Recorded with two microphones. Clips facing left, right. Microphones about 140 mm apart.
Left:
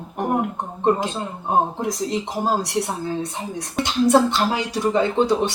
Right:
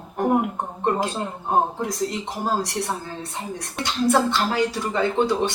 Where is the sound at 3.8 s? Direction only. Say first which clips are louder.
Left 4 dB; 20° left (ahead or behind).